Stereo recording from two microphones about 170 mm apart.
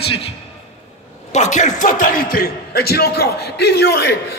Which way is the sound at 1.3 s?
45° left (ahead or behind).